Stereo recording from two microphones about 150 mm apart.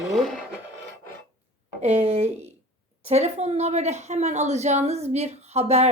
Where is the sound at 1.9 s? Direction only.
45° right (ahead or behind).